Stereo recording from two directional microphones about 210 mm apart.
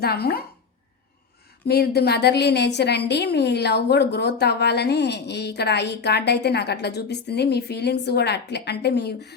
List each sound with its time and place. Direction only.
0.0 s a woman's voice: 50° left (ahead or behind)
1.6 s a woman's voice: 50° left (ahead or behind)